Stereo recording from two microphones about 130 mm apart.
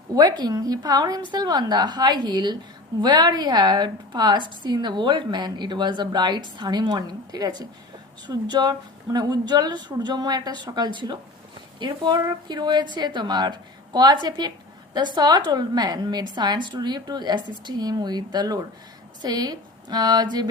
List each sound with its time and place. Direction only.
0.2 s a woman's voice: 30° right (ahead or behind)